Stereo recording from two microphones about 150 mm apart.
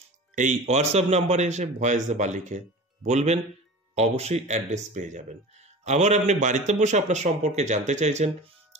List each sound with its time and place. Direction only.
0.4 s speech: 50° right (ahead or behind)